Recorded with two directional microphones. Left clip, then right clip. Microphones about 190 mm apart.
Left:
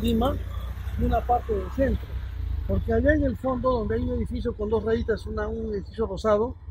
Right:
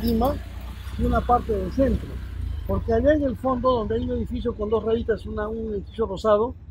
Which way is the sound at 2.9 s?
10° left (ahead or behind).